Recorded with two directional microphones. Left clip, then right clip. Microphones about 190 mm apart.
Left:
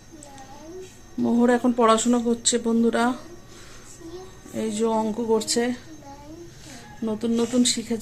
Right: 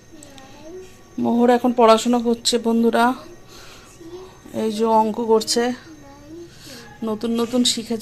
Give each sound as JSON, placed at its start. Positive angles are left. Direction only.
{"t": 1.2, "sound": "speech", "side_deg": -5}
{"t": 4.5, "sound": "speech", "side_deg": -10}
{"t": 7.0, "sound": "speech", "side_deg": -5}